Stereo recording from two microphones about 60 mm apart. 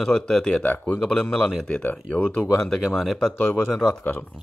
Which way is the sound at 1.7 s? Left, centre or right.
Left.